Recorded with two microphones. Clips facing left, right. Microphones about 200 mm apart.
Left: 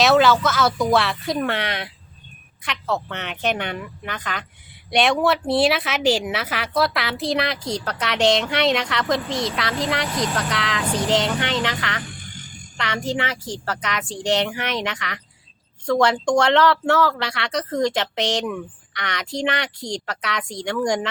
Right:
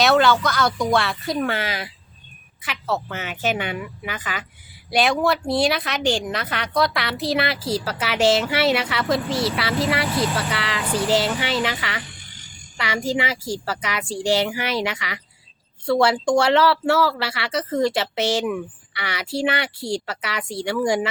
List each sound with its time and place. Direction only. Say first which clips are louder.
0.0 s a woman's voice: left 1 dB; centre (ahead or behind)
12.1 s frog: left 8 dB; 50° left (ahead or behind)
12.7 s speech: right 1 dB; 10° right (ahead or behind)